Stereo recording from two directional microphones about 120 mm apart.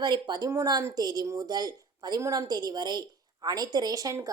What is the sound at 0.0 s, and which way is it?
Speech, 35° right (ahead or behind).